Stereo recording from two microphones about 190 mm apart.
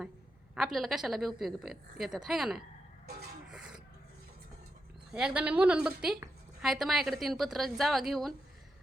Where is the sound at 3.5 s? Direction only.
5° right (ahead or behind).